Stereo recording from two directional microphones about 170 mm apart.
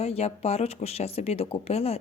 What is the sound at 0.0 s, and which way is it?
Speech, 35° left (ahead or behind).